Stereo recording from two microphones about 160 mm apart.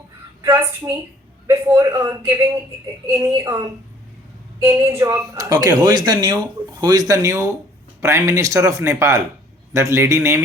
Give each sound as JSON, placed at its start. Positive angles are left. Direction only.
{"t": 0.4, "sound": "a man's voice", "side_deg": -25}